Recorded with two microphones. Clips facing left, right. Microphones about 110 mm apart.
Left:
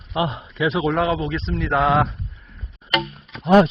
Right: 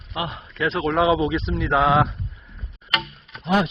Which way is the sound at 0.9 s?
10° right (ahead or behind).